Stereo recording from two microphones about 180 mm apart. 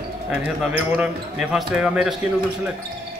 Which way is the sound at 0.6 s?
5° right (ahead or behind).